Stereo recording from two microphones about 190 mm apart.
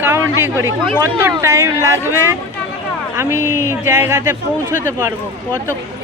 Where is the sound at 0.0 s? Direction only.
15° right (ahead or behind).